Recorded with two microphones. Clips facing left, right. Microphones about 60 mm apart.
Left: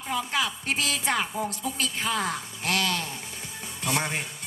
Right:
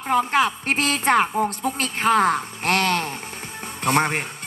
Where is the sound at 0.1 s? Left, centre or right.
Right.